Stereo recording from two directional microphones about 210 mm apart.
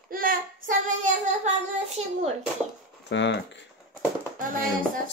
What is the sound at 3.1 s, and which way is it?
Speech, 60° left (ahead or behind).